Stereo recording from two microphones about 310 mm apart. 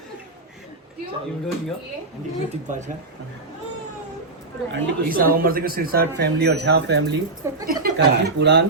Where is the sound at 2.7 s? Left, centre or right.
Right.